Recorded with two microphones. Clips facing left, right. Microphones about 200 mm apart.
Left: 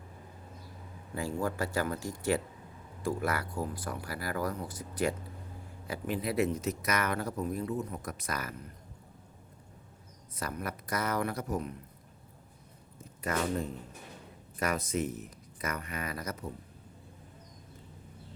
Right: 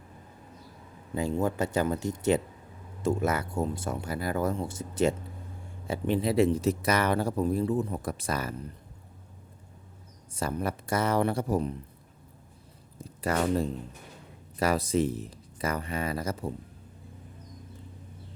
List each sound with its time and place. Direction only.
1.1 s speech: 20° right (ahead or behind)
10.3 s speech: 30° right (ahead or behind)
13.0 s speech: 35° right (ahead or behind)